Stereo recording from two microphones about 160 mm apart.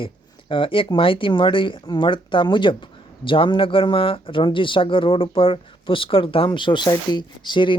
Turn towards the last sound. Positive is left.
turn(degrees=30)  # may be behind; listen again after turning